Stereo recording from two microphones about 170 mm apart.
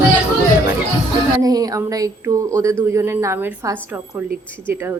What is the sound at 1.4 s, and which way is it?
A woman's voice, 20° right (ahead or behind).